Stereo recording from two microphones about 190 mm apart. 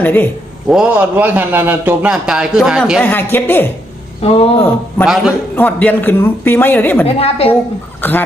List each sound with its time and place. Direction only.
0.0 s a woman's voice: 10° left (ahead or behind)
0.7 s a man's voice: 5° right (ahead or behind)
3.0 s a woman's voice: 10° left (ahead or behind)
4.2 s speech: 30° left (ahead or behind)
5.0 s a man's voice: centre (ahead or behind)
5.5 s a woman's voice: 10° left (ahead or behind)
7.2 s a woman's voice: 30° left (ahead or behind)
8.0 s a woman's voice: 10° left (ahead or behind)